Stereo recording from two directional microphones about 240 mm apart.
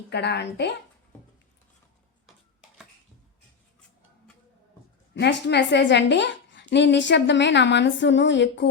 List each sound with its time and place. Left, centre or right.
0.1 s a woman's voice: left
2.2 s a sound: centre
5.1 s a woman's voice: left